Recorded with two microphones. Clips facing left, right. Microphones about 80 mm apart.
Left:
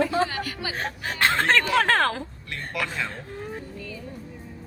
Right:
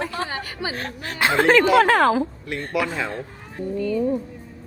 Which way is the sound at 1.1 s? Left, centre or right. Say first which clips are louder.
Right 5 dB; centre.